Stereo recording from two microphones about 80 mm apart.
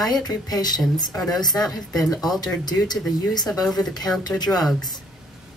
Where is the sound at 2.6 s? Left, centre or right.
Left.